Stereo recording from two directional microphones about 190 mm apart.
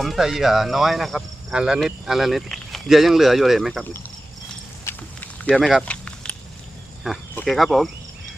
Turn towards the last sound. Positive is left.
turn(degrees=0)  # may be behind; listen again after turning